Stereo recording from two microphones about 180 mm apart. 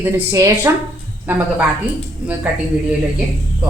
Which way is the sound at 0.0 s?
20° right (ahead or behind).